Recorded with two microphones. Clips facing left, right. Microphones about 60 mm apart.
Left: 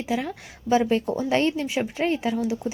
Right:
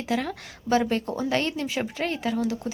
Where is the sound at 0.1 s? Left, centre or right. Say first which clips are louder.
Right 1 dB; centre.